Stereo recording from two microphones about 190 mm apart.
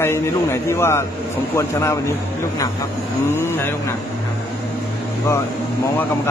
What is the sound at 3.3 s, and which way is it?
Speech, 10° left (ahead or behind).